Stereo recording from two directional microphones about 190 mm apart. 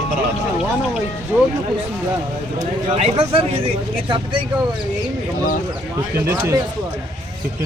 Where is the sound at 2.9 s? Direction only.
30° right (ahead or behind).